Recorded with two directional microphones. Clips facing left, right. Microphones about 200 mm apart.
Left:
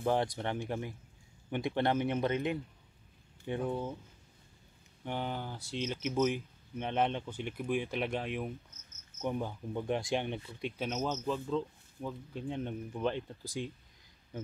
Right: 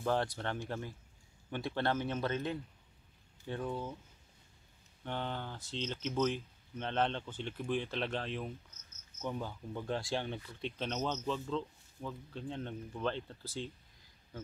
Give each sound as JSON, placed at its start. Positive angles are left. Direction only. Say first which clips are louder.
{"t": 0.0, "sound": "speech", "louder": "left 3 dB", "side_deg": 15}
{"t": 5.0, "sound": "speech", "louder": "left 2 dB", "side_deg": 10}